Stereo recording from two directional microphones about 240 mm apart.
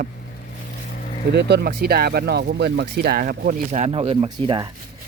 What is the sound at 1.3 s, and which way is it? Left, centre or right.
Speech, right.